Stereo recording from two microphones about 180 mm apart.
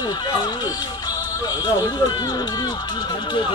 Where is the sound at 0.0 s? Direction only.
20° left (ahead or behind).